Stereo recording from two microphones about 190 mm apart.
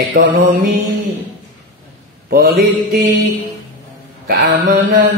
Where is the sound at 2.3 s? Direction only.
50° right (ahead or behind).